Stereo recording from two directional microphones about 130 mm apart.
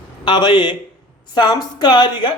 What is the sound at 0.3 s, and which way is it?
Speech, 35° left (ahead or behind).